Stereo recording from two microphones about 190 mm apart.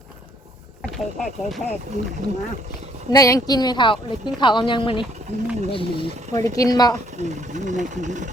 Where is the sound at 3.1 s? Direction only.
20° left (ahead or behind).